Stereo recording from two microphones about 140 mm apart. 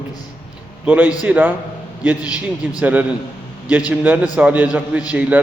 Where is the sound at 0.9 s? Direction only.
10° right (ahead or behind).